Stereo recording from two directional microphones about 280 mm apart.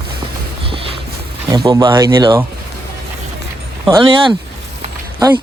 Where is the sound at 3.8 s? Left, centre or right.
Centre.